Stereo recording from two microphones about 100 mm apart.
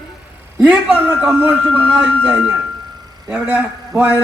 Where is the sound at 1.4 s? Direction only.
15° right (ahead or behind).